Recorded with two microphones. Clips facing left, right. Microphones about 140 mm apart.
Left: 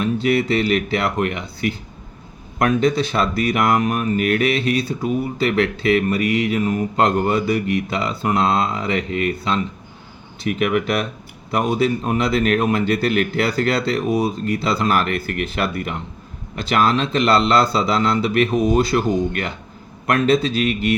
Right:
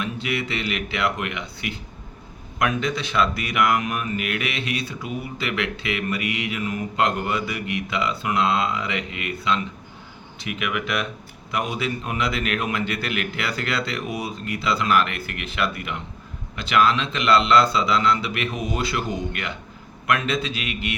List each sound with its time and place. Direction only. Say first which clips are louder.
0.0 s speech: left 9 dB; 35° left (ahead or behind)